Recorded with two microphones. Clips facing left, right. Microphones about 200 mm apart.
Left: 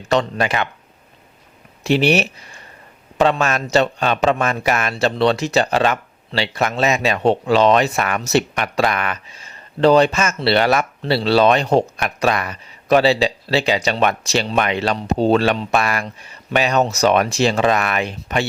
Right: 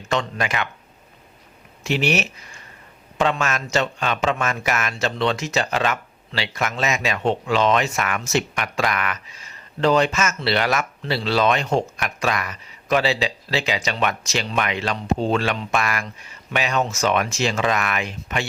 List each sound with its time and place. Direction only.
0.1 s a man's voice: 35° left (ahead or behind)
1.8 s a man's voice: 35° left (ahead or behind)